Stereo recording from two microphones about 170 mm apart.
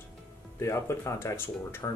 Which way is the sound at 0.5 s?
15° left (ahead or behind).